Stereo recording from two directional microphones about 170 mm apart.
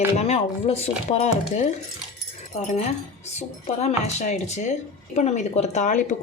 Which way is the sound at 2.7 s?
40° left (ahead or behind).